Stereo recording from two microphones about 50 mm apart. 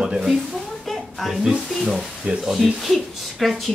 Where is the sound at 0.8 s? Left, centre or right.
Centre.